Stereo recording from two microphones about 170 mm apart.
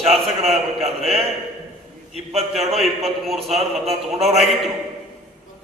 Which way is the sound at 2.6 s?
Centre (ahead or behind).